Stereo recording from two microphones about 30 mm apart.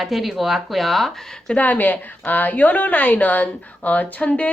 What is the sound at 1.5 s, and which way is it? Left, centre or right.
A woman's voice, left.